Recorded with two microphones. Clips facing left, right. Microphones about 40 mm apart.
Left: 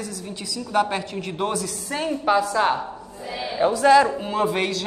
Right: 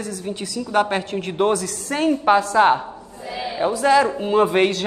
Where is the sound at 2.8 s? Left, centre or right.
Centre.